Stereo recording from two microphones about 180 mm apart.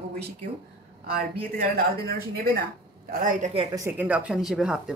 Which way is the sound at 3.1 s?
50° right (ahead or behind).